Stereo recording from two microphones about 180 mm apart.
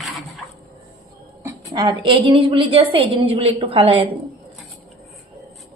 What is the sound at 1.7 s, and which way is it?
A woman's voice, 25° right (ahead or behind).